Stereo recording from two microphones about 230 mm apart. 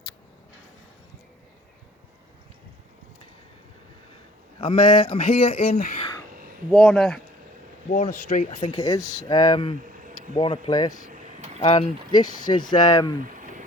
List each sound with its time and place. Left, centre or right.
4.6 s speech: left
6.7 s speech: centre
7.9 s speech: left
8.8 s speech: centre
11.1 s a sound: right
11.6 s speech: left